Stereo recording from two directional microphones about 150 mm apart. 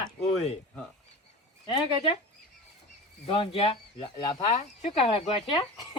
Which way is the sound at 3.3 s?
35° left (ahead or behind).